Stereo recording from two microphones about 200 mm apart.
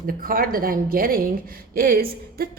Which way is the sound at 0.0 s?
45° right (ahead or behind).